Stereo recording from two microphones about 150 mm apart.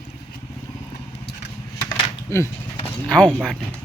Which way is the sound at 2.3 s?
20° left (ahead or behind).